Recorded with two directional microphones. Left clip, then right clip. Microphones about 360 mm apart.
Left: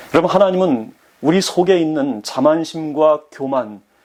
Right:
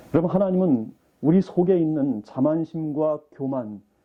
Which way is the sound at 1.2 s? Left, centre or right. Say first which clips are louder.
Left 7 dB; centre.